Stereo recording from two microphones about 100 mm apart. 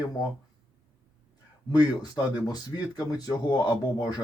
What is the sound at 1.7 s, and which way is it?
Speech, 45° left (ahead or behind).